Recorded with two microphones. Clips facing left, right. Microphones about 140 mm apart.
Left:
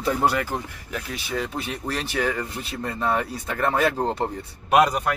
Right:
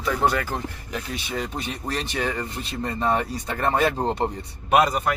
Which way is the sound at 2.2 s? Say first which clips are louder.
Left 3 dB; 25° right (ahead or behind).